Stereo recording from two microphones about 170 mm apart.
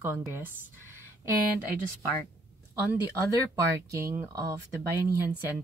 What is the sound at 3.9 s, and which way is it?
Speech, 15° right (ahead or behind).